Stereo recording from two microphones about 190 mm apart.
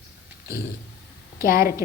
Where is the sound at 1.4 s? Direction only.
50° left (ahead or behind).